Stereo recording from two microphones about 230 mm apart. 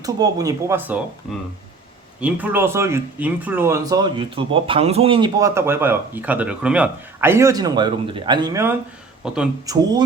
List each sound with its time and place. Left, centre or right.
0.0 s speech: centre
2.2 s speech: centre
9.2 s speech: centre
9.7 s speech: centre